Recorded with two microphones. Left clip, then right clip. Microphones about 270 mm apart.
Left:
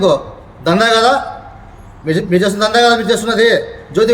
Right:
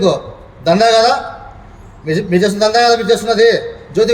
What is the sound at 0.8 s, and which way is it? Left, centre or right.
Speech, left.